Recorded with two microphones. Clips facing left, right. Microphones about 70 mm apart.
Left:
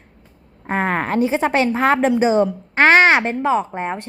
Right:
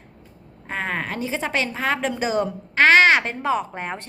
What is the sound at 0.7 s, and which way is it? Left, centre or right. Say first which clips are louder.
A woman's voice: left 7 dB; left.